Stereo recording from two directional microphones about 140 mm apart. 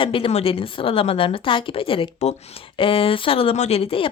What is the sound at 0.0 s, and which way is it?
Speech, 40° left (ahead or behind).